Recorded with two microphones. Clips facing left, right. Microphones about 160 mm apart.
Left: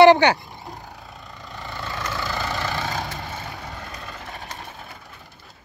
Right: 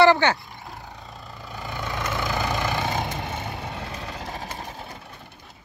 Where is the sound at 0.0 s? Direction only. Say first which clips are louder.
Left 4 dB; 15° left (ahead or behind).